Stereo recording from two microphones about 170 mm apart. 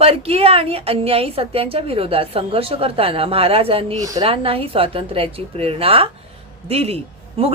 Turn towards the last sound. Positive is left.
turn(degrees=-35)  # may be behind; listen again after turning